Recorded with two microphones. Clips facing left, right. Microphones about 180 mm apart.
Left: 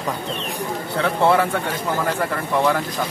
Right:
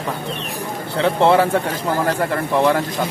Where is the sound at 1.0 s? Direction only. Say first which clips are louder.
Right 3 dB; 25° right (ahead or behind).